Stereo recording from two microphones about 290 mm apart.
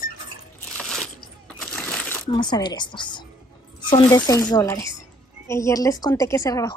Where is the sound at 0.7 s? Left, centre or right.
Centre.